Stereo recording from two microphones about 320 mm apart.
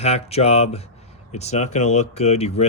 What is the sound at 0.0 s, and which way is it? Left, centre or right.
Speech, centre.